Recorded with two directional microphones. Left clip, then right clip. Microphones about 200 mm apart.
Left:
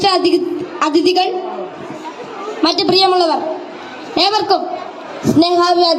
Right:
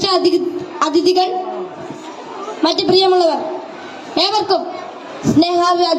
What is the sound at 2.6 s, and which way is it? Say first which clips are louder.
A woman's voice: left 1 dB; 5° left (ahead or behind).